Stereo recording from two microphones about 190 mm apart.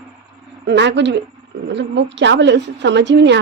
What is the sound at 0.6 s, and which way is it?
A woman's voice, 70° right (ahead or behind).